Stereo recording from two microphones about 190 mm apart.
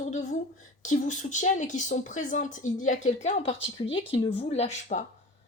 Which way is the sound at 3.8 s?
25° left (ahead or behind).